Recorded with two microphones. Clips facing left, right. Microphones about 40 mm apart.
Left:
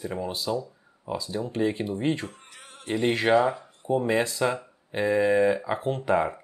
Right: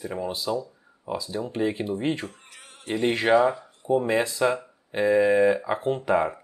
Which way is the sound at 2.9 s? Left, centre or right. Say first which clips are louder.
Right 1 dB; centre.